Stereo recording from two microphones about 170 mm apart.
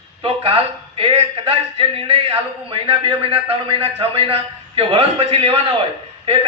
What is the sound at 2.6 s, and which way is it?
A man's voice, 30° right (ahead or behind).